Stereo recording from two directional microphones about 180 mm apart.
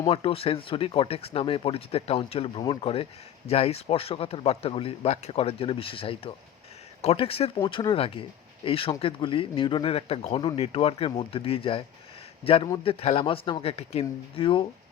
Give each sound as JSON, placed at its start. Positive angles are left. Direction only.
{"t": 0.1, "sound": "speech", "side_deg": 30}